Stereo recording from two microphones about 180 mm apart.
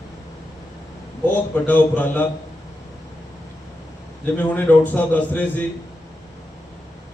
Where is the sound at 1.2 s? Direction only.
10° left (ahead or behind).